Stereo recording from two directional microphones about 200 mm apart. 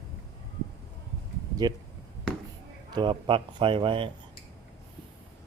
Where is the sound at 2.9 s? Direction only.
25° right (ahead or behind).